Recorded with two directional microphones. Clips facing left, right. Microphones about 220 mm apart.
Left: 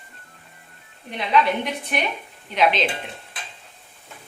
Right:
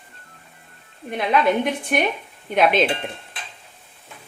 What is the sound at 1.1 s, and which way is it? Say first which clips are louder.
Speech: right 2 dB; 50° right (ahead or behind).